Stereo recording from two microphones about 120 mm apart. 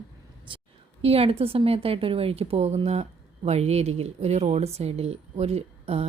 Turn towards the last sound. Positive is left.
turn(degrees=-60)  # may be behind; listen again after turning